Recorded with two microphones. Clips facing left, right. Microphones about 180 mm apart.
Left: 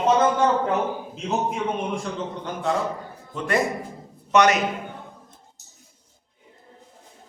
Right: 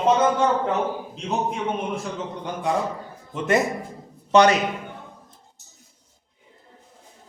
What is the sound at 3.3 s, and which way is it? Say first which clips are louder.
A man's voice: right 2 dB; 20° right (ahead or behind).